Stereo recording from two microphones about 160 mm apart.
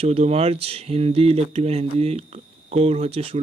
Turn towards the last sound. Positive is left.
turn(degrees=-35)  # may be behind; listen again after turning